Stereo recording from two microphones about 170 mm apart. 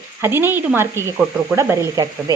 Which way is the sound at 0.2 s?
15° right (ahead or behind).